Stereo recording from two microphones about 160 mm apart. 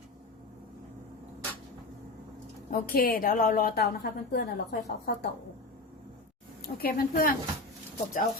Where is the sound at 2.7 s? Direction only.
65° left (ahead or behind); by 4.6 s 85° left.